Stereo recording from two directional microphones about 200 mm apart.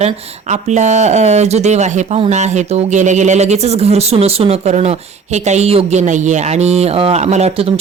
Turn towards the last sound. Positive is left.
turn(degrees=-30)  # may be behind; listen again after turning